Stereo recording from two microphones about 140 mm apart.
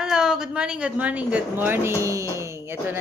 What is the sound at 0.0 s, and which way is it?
A woman's voice, 5° right (ahead or behind).